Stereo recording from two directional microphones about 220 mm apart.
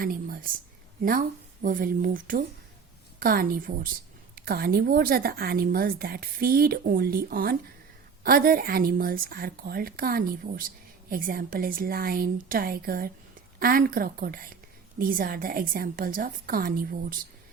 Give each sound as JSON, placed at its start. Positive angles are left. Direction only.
{"t": 0.0, "sound": "a woman's voice", "side_deg": -40}
{"t": 1.6, "sound": "a woman's voice", "side_deg": -40}